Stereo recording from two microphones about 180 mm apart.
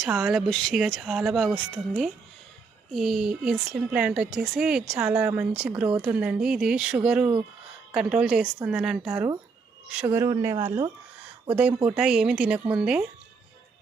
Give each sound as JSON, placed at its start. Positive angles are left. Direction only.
{"t": 0.0, "sound": "a woman's voice", "side_deg": -5}
{"t": 11.4, "sound": "a woman's voice", "side_deg": -5}